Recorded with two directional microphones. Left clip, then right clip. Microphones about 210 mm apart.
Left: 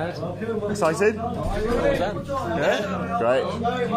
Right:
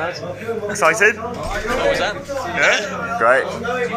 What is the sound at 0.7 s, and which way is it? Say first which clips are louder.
Speech: right 7 dB; 25° left (ahead or behind).